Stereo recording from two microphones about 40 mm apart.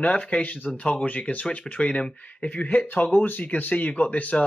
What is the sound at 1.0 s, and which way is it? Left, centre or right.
Speech, left.